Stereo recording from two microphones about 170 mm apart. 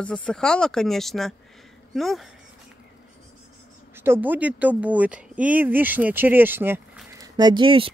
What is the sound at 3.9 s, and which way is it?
Speech, 15° right (ahead or behind).